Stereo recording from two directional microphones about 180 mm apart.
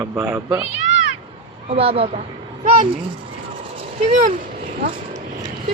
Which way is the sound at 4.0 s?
40° right (ahead or behind).